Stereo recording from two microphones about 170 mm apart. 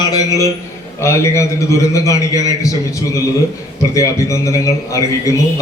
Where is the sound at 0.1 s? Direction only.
20° left (ahead or behind).